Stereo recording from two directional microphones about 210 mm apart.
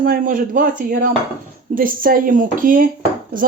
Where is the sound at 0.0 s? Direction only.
40° right (ahead or behind).